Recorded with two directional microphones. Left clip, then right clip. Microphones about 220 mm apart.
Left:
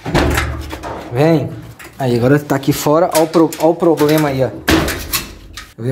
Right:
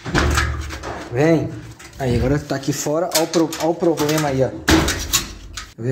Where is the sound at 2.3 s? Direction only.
30° left (ahead or behind).